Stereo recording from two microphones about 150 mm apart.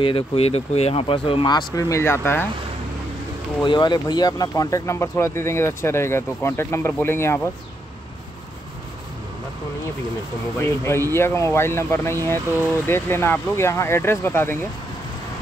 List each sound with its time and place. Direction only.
0.0 s speech: 40° left (ahead or behind); by 2.4 s 15° left (ahead or behind)
3.6 s speech: 30° left (ahead or behind)
10.6 s speech: 15° left (ahead or behind)